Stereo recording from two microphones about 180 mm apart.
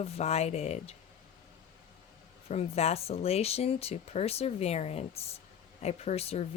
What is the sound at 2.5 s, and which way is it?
Speech, 35° left (ahead or behind).